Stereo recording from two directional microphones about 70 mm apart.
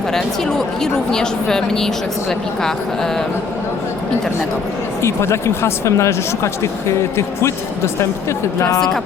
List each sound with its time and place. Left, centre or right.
0.1 s speech: centre
5.0 s speech: left